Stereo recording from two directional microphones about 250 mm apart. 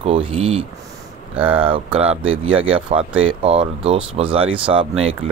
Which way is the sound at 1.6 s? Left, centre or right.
Right.